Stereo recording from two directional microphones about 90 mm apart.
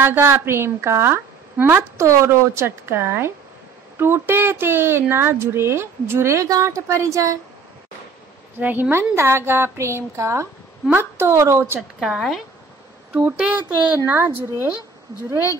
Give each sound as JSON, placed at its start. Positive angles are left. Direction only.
{"t": 0.0, "sound": "a woman's voice", "side_deg": -25}
{"t": 8.5, "sound": "a woman's voice", "side_deg": -20}
{"t": 12.0, "sound": "speech", "side_deg": 0}
{"t": 13.4, "sound": "a woman's voice", "side_deg": -15}